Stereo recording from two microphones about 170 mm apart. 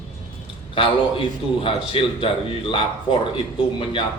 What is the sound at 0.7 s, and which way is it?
A man's voice, 30° left (ahead or behind).